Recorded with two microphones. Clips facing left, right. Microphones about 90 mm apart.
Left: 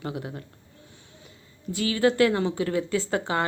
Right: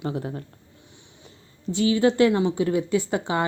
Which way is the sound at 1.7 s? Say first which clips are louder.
Right 3 dB; 25° right (ahead or behind).